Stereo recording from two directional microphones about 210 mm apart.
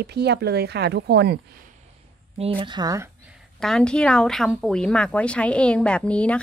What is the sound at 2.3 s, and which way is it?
Speech, 25° right (ahead or behind).